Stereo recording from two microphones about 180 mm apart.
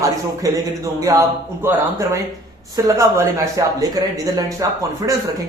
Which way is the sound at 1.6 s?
15° right (ahead or behind).